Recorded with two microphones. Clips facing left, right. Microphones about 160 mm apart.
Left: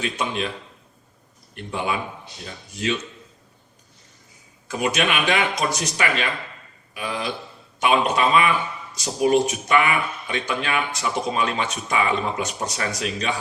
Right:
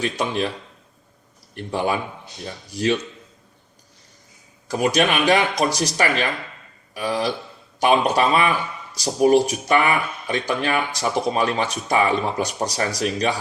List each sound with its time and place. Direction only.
0.0 s speech: 35° right (ahead or behind)
1.5 s speech: 40° right (ahead or behind)
4.7 s speech: 35° right (ahead or behind)